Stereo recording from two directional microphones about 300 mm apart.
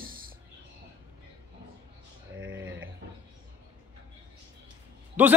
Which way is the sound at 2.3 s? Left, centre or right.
Right.